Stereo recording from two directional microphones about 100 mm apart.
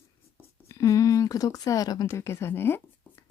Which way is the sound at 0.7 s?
30° left (ahead or behind).